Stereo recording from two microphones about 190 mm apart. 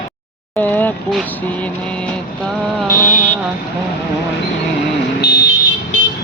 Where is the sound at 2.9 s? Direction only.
45° left (ahead or behind).